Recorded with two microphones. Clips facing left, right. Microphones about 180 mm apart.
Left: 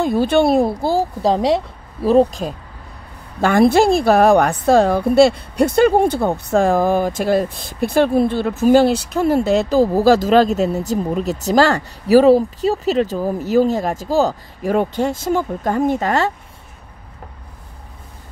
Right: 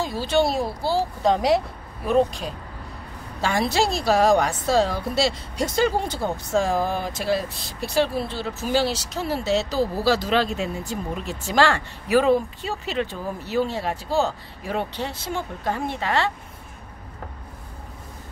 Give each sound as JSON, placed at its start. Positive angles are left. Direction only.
{"t": 0.0, "sound": "a woman's voice", "side_deg": 55}
{"t": 1.2, "sound": "speech", "side_deg": 30}
{"t": 3.3, "sound": "a woman's voice", "side_deg": 55}